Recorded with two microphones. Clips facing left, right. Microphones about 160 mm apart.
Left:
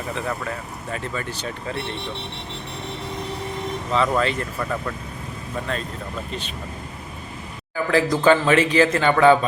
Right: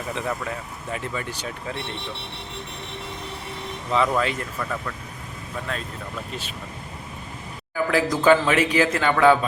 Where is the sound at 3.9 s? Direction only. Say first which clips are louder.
Left 1 dB; 10° right (ahead or behind).